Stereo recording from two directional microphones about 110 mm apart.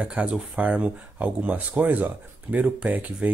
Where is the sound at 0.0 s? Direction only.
10° right (ahead or behind).